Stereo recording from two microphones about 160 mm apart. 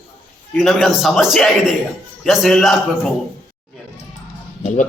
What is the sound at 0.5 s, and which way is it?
A man's voice, centre (ahead or behind).